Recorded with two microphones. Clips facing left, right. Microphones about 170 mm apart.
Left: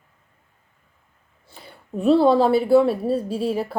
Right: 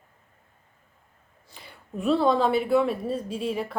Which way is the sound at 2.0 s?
30° left (ahead or behind).